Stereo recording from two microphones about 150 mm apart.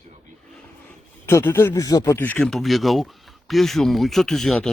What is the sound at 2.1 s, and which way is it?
Speech, 10° left (ahead or behind).